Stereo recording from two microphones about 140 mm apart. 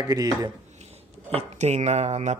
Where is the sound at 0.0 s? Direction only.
25° right (ahead or behind).